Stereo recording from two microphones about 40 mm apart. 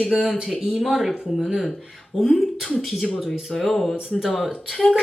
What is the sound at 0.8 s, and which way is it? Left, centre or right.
A woman's voice, centre.